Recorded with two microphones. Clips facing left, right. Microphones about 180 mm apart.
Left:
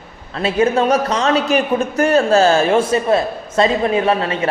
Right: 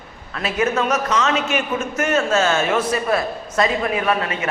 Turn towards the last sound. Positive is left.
turn(degrees=30)  # may be behind; listen again after turning